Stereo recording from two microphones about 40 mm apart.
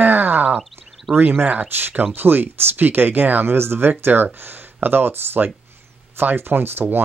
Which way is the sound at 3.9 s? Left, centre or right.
Right.